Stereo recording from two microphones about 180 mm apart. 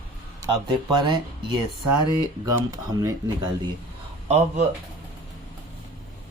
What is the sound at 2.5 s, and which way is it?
Speech, 20° right (ahead or behind).